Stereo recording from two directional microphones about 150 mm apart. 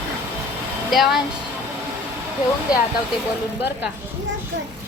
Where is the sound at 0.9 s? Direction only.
Centre (ahead or behind).